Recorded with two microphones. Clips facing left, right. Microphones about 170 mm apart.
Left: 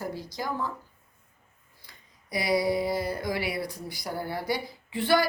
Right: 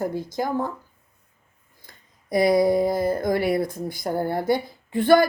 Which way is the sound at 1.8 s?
50° right (ahead or behind).